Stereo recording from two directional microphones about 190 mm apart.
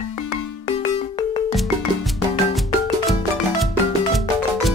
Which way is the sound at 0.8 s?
30° left (ahead or behind).